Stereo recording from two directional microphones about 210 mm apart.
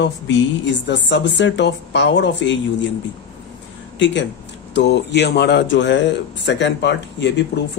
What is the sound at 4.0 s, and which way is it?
Speech, 55° left (ahead or behind).